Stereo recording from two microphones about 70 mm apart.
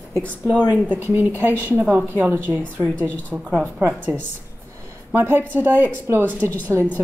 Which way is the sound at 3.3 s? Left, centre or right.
Centre.